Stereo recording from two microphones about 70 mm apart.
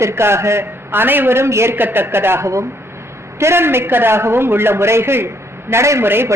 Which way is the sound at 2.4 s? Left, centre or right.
Right.